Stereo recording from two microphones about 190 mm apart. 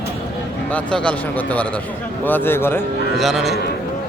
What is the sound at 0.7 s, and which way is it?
Speech, 5° left (ahead or behind).